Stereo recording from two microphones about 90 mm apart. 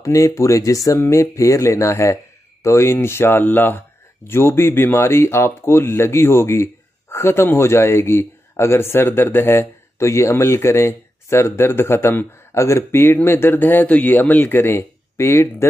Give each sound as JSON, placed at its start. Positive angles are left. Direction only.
{"t": 0.0, "sound": "speech", "side_deg": 35}